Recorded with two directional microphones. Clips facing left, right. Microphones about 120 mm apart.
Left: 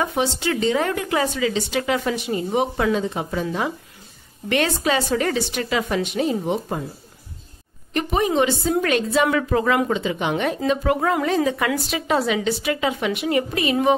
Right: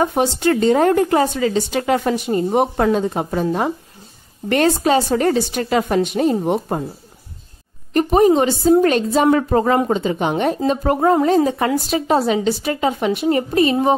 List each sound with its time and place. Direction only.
0.0 s a woman's voice: 45° right (ahead or behind)
7.9 s a woman's voice: 40° right (ahead or behind)